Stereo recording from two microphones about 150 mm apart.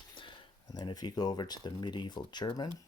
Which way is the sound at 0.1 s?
30° left (ahead or behind).